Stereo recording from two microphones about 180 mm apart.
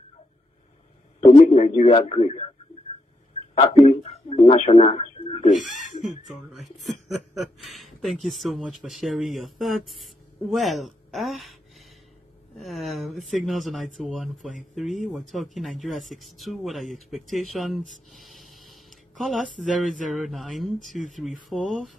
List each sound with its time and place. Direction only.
1.2 s speech: 30° left (ahead or behind)
3.5 s speech: 30° left (ahead or behind)
5.5 s speech: 45° left (ahead or behind)
7.7 s speech: centre (ahead or behind)
12.5 s speech: centre (ahead or behind)